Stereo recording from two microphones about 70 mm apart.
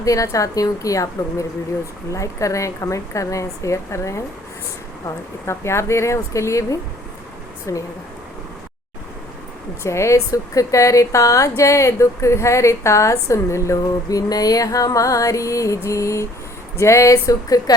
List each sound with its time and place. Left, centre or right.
0.0 s a woman's voice: left
9.8 s a woman's voice: left